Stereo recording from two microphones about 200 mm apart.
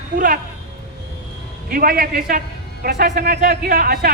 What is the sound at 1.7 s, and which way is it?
A man's voice, 45° right (ahead or behind).